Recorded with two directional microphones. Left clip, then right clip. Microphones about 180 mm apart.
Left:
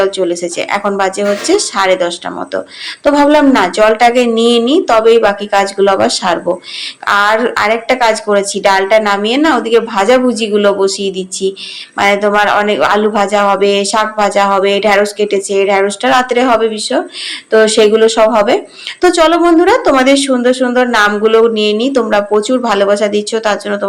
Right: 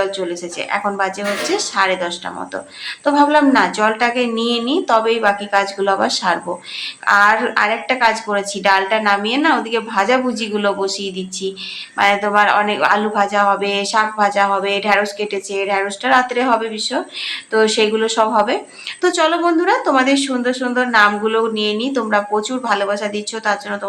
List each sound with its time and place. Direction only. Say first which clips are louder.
0.0 s speech: left 8 dB; 30° left (ahead or behind)